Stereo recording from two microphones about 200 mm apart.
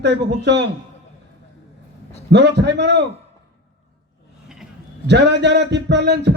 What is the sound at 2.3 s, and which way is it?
Speech, 60° right (ahead or behind).